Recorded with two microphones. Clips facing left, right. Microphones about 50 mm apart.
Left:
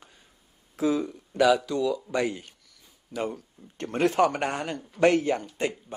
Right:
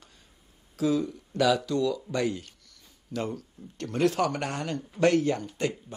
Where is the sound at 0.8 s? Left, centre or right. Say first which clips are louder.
Left 1 dB; left.